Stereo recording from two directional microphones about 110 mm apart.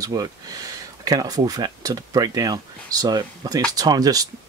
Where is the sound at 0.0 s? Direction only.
35° right (ahead or behind).